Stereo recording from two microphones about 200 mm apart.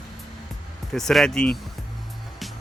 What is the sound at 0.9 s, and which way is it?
Speech, centre (ahead or behind).